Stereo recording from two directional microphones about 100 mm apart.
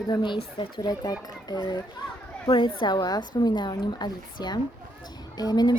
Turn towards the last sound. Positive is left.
turn(degrees=40)  # may be behind; listen again after turning